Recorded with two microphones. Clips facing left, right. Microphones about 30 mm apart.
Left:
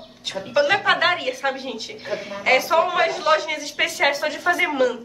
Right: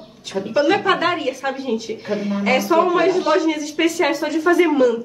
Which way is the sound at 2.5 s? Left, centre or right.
Centre.